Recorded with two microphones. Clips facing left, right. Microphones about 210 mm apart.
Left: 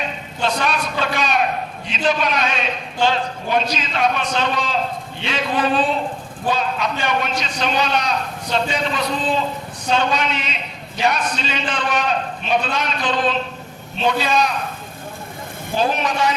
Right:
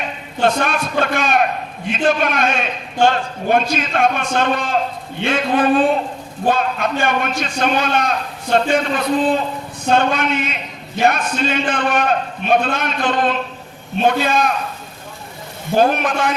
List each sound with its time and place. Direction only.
0.4 s a man's voice: 50° right (ahead or behind)
15.7 s a man's voice: 55° right (ahead or behind)